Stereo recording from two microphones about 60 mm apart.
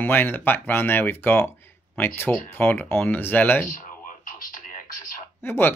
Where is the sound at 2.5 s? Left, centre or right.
Left.